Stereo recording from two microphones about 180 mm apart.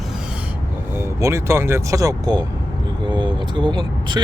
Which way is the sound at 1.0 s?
15° right (ahead or behind).